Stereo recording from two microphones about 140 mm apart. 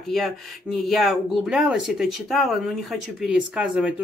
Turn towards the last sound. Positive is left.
turn(degrees=-5)  # may be behind; listen again after turning